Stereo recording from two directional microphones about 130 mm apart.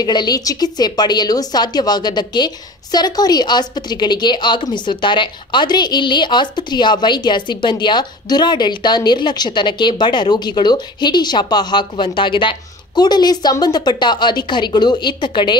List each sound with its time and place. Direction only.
0.0 s a woman's voice: 30° left (ahead or behind)